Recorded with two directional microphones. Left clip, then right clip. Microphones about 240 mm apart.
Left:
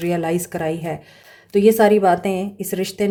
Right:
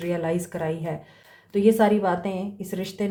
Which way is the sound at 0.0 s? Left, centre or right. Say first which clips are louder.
Left 5 dB; left.